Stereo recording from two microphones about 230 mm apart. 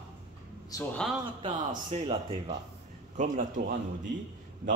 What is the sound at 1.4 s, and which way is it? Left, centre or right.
A man's voice, right.